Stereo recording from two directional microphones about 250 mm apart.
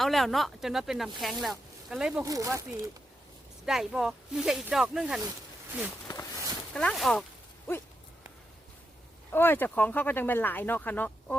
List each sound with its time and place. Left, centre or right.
0.0 s speech: centre
2.2 s speech: centre
3.7 s speech: centre
6.1 s a sound: centre
6.7 s speech: centre
9.3 s speech: centre